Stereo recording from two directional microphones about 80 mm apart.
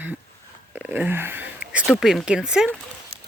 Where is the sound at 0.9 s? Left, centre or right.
Right.